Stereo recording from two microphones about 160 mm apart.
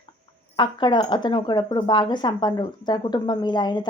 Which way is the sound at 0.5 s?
30° left (ahead or behind).